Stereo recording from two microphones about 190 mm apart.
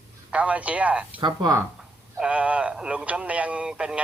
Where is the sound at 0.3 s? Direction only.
5° right (ahead or behind).